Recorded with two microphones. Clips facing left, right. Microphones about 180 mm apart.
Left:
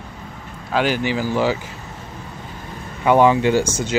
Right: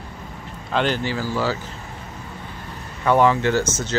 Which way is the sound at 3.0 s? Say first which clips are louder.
Left 3 dB; 15° left (ahead or behind).